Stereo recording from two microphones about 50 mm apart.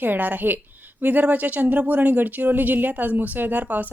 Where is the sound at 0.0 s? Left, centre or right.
Right.